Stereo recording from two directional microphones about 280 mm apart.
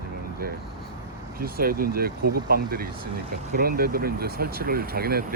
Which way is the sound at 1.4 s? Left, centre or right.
Right.